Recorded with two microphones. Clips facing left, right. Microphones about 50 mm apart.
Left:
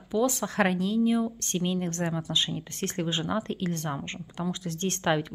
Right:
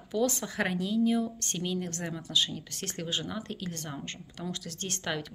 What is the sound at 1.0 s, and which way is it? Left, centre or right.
Speech, centre.